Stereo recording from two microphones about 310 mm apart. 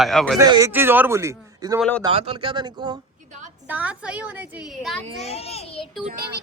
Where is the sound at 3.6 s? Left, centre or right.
Centre.